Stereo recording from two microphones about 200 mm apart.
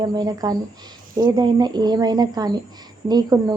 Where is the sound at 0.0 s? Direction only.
20° right (ahead or behind).